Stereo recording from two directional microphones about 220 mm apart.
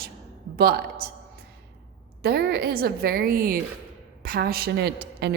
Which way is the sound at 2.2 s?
45° right (ahead or behind).